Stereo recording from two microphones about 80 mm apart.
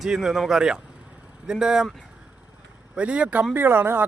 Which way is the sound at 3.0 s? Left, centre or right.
Centre.